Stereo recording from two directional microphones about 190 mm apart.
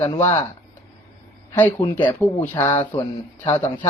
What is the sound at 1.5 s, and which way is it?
Speech, 10° left (ahead or behind).